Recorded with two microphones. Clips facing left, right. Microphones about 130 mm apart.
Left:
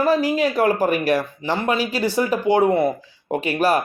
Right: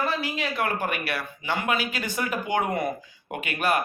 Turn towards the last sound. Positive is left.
turn(degrees=35)  # may be behind; listen again after turning